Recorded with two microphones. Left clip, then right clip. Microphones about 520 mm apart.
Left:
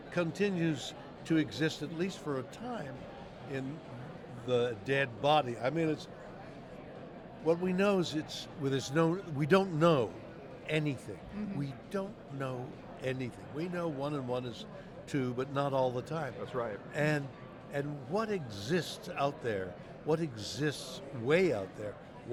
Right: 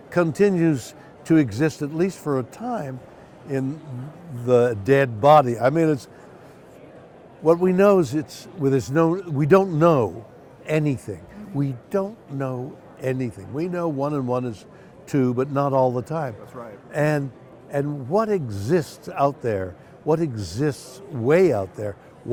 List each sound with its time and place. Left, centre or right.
0.1 s a man's voice: right
7.4 s speech: right
16.6 s a man's voice: left
16.9 s speech: right